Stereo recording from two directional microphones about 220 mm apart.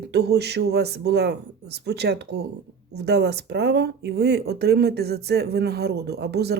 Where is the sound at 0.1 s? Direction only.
50° right (ahead or behind).